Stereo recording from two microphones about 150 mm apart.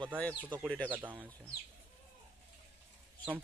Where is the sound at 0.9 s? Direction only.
10° right (ahead or behind).